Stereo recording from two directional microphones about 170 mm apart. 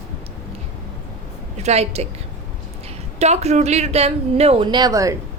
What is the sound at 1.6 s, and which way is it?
Speech, 40° right (ahead or behind).